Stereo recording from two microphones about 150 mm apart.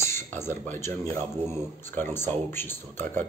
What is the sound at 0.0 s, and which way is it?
Speech, 15° left (ahead or behind).